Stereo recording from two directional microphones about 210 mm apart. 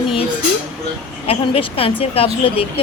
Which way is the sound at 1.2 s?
25° left (ahead or behind).